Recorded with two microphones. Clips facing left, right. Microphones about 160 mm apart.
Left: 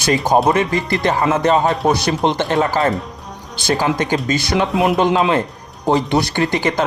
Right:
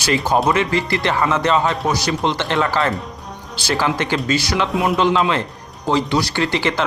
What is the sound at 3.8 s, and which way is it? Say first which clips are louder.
Speech: left 1 dB; 45° left (ahead or behind).